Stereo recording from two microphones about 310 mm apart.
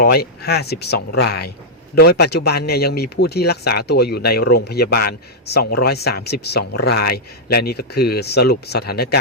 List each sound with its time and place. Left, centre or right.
0.0 s speech: left